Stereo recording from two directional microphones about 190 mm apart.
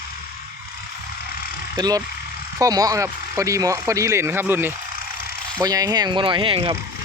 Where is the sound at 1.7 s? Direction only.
20° right (ahead or behind).